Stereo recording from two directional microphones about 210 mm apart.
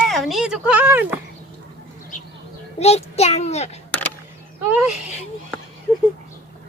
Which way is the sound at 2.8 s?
30° left (ahead or behind).